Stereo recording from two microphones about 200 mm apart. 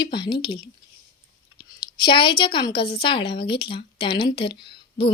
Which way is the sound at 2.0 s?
25° left (ahead or behind).